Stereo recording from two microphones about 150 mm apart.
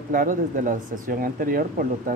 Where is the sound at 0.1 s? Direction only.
65° right (ahead or behind).